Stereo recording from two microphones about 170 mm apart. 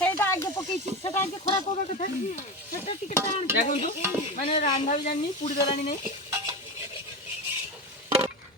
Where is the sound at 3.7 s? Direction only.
45° left (ahead or behind).